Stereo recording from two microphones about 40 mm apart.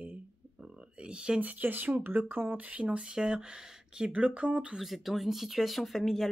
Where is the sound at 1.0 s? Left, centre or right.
Right.